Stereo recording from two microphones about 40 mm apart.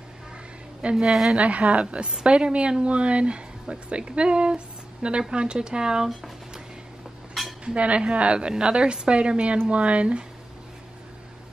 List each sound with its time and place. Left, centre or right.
0.9 s speech: centre
1.3 s a woman's voice: right; by 6.1 s centre
7.6 s a woman's voice: right